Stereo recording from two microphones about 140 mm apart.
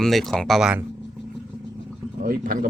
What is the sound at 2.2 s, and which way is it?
Speech, 90° right.